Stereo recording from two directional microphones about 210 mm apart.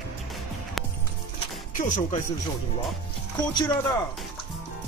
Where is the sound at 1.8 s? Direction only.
35° left (ahead or behind).